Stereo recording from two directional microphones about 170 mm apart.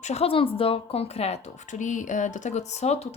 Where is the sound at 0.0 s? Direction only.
40° left (ahead or behind).